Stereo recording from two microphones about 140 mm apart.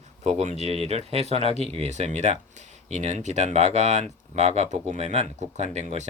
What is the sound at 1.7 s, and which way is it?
Speech, 50° right (ahead or behind).